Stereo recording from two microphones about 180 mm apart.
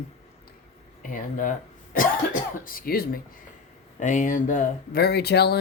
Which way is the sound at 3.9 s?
45° left (ahead or behind).